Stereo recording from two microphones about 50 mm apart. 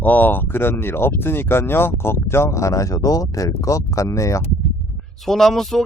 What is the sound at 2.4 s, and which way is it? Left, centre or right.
Speech, left.